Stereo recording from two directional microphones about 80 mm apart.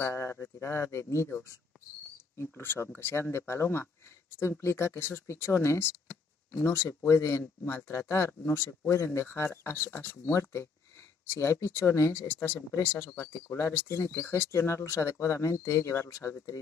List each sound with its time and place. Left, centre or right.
0.0 s speech: left
2.3 s speech: left